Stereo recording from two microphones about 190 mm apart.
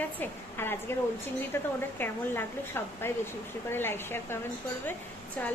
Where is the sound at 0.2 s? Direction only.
10° left (ahead or behind).